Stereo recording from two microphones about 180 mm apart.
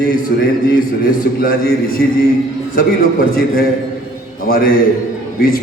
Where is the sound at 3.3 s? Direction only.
55° left (ahead or behind).